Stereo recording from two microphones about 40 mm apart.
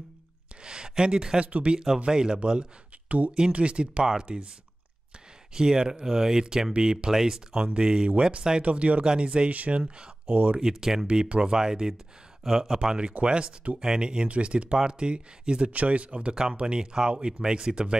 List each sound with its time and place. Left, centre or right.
0.7 s speech: centre
1.4 s speech: right
2.0 s speech: centre
4.0 s speech: centre
5.5 s speech: centre
7.6 s speech: right
9.0 s speech: right
9.5 s speech: right
10.3 s speech: right
10.6 s speech: centre
15.7 s speech: right